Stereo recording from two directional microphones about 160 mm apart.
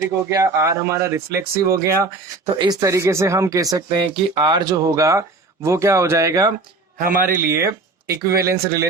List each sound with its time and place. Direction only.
0.0 s speech: 20° right (ahead or behind)
7.0 s speech: 60° right (ahead or behind)
7.3 s speech: 15° right (ahead or behind)